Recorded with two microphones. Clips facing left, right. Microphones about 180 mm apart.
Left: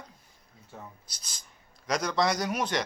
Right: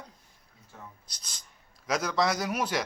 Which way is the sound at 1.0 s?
5° left (ahead or behind).